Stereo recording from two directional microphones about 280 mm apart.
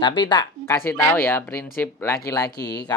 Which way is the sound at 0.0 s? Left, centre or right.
Centre.